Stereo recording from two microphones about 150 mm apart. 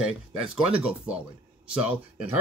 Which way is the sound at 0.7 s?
10° right (ahead or behind).